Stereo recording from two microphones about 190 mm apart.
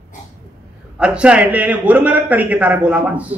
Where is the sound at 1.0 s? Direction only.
5° right (ahead or behind).